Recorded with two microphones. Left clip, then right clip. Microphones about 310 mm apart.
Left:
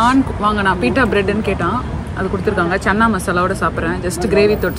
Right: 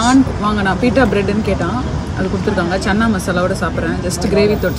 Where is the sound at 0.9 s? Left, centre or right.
Left.